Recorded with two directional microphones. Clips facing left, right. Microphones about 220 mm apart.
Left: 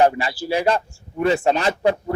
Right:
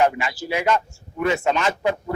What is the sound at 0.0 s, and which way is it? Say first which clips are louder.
A man's voice: left 3 dB; 35° left (ahead or behind).